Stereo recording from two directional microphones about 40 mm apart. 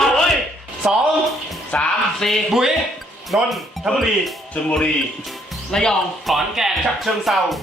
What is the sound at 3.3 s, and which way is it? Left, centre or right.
Speech, right.